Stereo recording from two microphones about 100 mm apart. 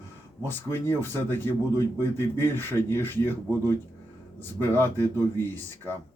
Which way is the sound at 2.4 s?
20° left (ahead or behind).